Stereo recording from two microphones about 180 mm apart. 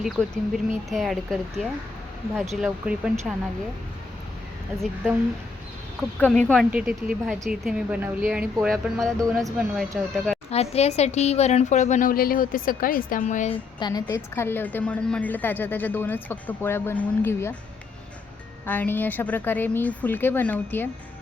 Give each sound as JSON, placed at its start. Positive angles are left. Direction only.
{"t": 0.0, "sound": "speech", "side_deg": 0}
{"t": 6.0, "sound": "speech", "side_deg": 5}
{"t": 6.7, "sound": "speech", "side_deg": -5}
{"t": 10.5, "sound": "a woman's voice", "side_deg": 35}
{"t": 13.7, "sound": "a woman's voice", "side_deg": 20}
{"t": 18.6, "sound": "a woman's voice", "side_deg": 10}